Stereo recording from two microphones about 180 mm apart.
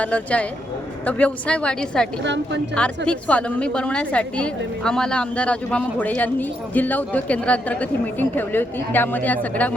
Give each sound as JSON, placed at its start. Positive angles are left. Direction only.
{"t": 0.0, "sound": "a woman's voice", "side_deg": 5}
{"t": 2.2, "sound": "a woman's voice", "side_deg": -80}
{"t": 2.7, "sound": "a woman's voice", "side_deg": 5}